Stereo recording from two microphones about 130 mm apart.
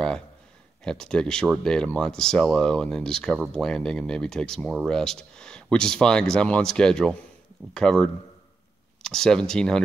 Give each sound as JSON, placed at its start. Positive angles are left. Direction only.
{"t": 0.8, "sound": "speech", "side_deg": 5}